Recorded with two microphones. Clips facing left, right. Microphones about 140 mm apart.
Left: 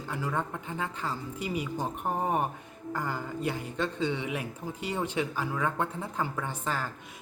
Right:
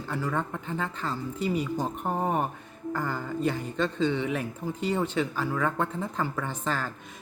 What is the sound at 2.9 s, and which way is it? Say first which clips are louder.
Speech: right 3 dB; 10° left (ahead or behind).